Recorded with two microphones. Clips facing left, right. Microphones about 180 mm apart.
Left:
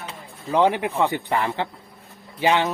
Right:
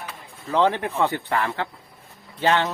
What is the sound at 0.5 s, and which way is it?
A man's voice, 15° left (ahead or behind).